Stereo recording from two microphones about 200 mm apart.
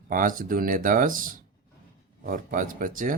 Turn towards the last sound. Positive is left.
turn(degrees=-40)  # may be behind; listen again after turning